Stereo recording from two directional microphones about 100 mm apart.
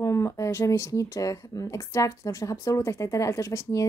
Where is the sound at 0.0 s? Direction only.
30° left (ahead or behind).